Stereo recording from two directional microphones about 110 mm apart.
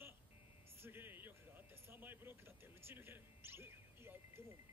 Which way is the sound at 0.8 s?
20° right (ahead or behind).